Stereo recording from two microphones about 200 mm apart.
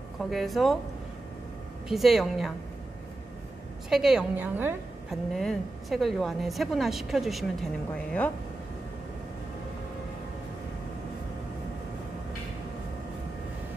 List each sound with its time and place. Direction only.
0.2 s a woman's voice: centre (ahead or behind)
1.9 s a woman's voice: centre (ahead or behind)
3.9 s a woman's voice: 5° right (ahead or behind)
5.3 s a woman's voice: centre (ahead or behind)